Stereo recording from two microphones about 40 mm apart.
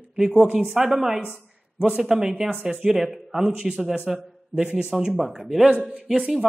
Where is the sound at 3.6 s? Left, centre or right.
Centre.